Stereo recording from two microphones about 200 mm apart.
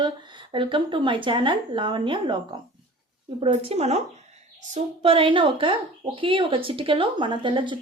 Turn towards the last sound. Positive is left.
turn(degrees=-25)  # may be behind; listen again after turning